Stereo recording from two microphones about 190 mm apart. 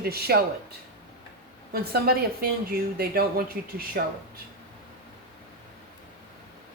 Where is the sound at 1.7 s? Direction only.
55° right (ahead or behind).